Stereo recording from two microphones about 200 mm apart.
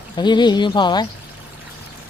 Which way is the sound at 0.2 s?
20° left (ahead or behind).